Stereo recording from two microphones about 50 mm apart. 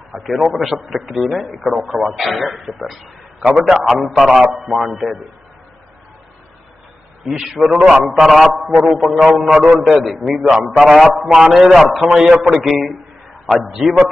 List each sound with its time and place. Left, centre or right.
0.1 s a man's voice: centre
3.5 s a man's voice: centre
4.0 s a man's voice: centre
7.2 s a man's voice: centre